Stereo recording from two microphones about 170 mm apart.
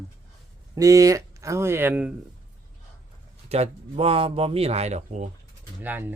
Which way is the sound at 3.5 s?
35° right (ahead or behind).